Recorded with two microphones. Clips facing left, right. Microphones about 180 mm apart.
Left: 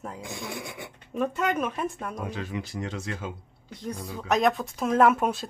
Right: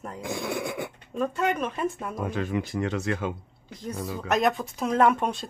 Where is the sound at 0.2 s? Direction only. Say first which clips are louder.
Right 6 dB; 60° right (ahead or behind).